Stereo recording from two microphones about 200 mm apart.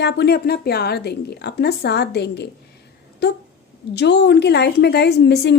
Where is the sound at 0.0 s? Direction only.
55° left (ahead or behind).